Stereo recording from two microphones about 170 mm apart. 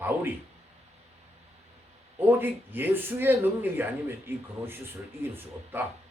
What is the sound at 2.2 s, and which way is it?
Speech, 10° right (ahead or behind).